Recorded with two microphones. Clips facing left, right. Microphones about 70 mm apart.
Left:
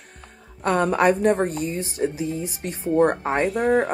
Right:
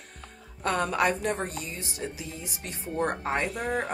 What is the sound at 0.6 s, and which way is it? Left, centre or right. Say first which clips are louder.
A woman's voice: left 7 dB; left.